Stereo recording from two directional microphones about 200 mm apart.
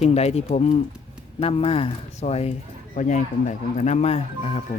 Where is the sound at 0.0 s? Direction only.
30° left (ahead or behind).